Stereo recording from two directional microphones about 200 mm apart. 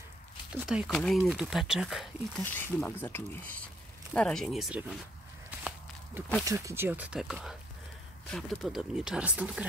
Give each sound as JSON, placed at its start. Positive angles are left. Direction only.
{"t": 0.5, "sound": "speech", "side_deg": -5}
{"t": 2.5, "sound": "speech", "side_deg": 10}
{"t": 5.5, "sound": "walk", "side_deg": -10}
{"t": 6.4, "sound": "speech", "side_deg": -15}